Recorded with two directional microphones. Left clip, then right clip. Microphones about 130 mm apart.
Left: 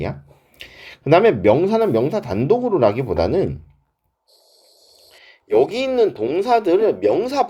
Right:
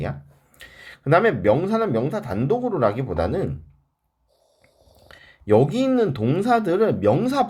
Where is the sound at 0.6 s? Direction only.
35° left (ahead or behind).